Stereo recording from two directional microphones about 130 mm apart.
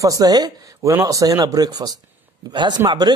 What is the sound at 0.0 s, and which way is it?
Speech, 30° right (ahead or behind).